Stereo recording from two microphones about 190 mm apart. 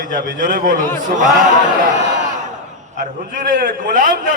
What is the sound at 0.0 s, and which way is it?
A man's voice, 45° right (ahead or behind).